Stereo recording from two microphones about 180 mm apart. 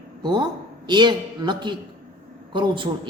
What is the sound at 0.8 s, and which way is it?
A man's voice, 25° right (ahead or behind).